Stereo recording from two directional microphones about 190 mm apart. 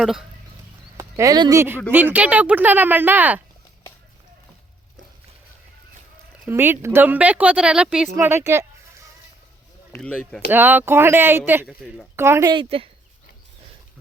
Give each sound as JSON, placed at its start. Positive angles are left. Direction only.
{"t": 0.0, "sound": "speech", "side_deg": 0}
{"t": 0.9, "sound": "speech", "side_deg": -20}
{"t": 6.5, "sound": "speech", "side_deg": -10}
{"t": 9.9, "sound": "speech", "side_deg": 5}
{"t": 10.5, "sound": "speech", "side_deg": -10}